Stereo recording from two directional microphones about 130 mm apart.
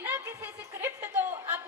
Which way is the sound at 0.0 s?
15° right (ahead or behind).